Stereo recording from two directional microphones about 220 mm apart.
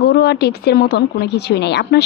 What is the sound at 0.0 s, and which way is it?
Speech, 50° left (ahead or behind).